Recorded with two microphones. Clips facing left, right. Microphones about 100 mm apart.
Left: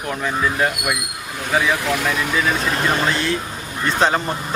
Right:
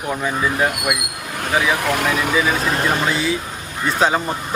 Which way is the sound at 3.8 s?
5° right (ahead or behind).